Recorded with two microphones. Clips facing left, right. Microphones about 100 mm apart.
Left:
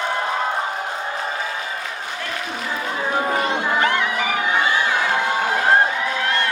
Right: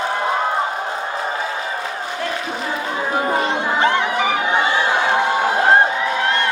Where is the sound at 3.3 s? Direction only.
25° right (ahead or behind).